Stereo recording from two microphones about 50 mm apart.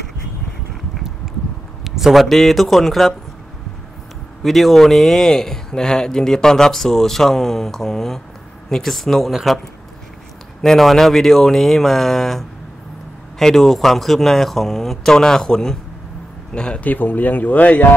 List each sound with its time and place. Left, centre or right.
1.9 s speech: centre
4.4 s speech: centre
10.6 s speech: centre
16.8 s speech: left